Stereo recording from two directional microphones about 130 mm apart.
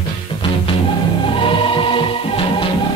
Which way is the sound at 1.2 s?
40° left (ahead or behind).